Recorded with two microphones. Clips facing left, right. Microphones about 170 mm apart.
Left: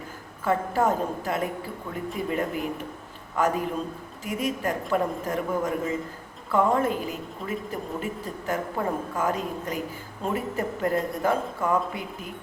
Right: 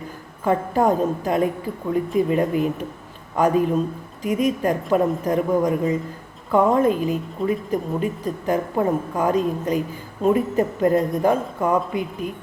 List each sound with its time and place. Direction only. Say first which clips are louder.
0.4 s a woman's voice: right 5 dB; 20° right (ahead or behind)